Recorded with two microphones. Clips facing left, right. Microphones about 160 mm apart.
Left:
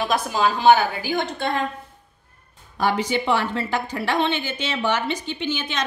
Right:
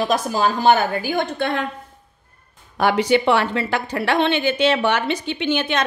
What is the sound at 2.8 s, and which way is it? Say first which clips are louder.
A woman's voice: right 5 dB; 70° right (ahead or behind).